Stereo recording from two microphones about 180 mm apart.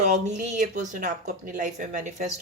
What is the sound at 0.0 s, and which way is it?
Speech, 40° right (ahead or behind).